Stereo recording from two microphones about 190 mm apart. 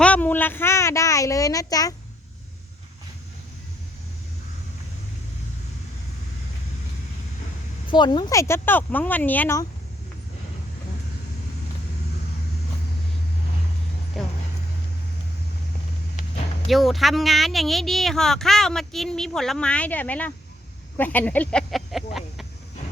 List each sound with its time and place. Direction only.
0.0 s a child's voice: 10° left (ahead or behind)
7.9 s speech: 25° left (ahead or behind)
14.2 s speech: centre (ahead or behind)
16.6 s speech: centre (ahead or behind)